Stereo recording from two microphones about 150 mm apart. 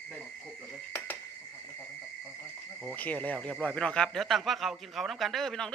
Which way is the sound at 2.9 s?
10° left (ahead or behind).